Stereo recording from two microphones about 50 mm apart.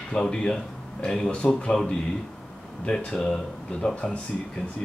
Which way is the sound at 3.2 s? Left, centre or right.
Centre.